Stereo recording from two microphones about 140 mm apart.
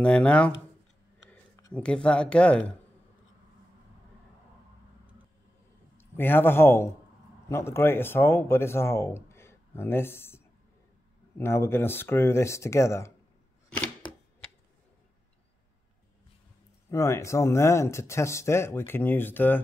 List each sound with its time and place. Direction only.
0.0 s speech: 10° left (ahead or behind)
1.7 s speech: 5° left (ahead or behind)
5.9 s a man's voice: 15° left (ahead or behind)
16.9 s speech: 20° left (ahead or behind)